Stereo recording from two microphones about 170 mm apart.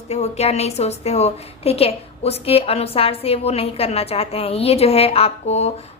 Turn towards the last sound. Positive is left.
turn(degrees=35)  # may be behind; listen again after turning